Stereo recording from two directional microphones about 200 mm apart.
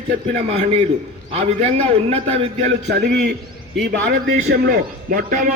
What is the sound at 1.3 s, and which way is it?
A man's voice, 30° right (ahead or behind).